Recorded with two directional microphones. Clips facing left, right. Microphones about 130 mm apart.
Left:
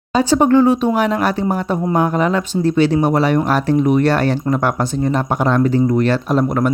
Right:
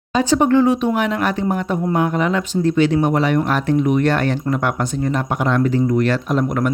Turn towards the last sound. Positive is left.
turn(degrees=35)  # may be behind; listen again after turning